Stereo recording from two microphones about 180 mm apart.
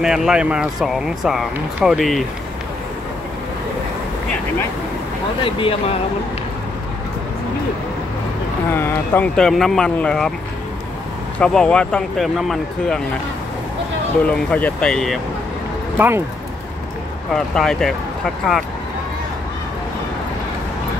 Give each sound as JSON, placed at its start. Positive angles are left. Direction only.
{"t": 0.0, "sound": "speech", "side_deg": -5}
{"t": 5.4, "sound": "speech", "side_deg": 30}
{"t": 8.7, "sound": "speech", "side_deg": 10}
{"t": 11.3, "sound": "speech", "side_deg": 5}
{"t": 14.2, "sound": "speech", "side_deg": 5}
{"t": 17.3, "sound": "speech", "side_deg": 0}